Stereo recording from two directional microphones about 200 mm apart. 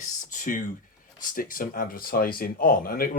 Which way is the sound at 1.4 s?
45° left (ahead or behind).